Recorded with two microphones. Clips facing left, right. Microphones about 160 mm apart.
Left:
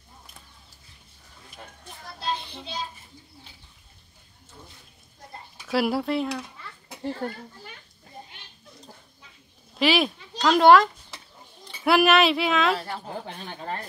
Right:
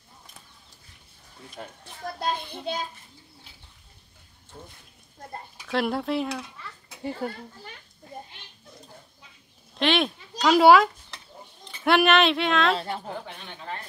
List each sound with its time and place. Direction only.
2.1 s child singing: 50° right (ahead or behind)
5.2 s a sound: 50° right (ahead or behind)
5.7 s speech: 5° left (ahead or behind)
9.8 s a child's voice: 5° left (ahead or behind)
12.7 s a woman's voice: 25° right (ahead or behind)
13.4 s speech: 40° left (ahead or behind)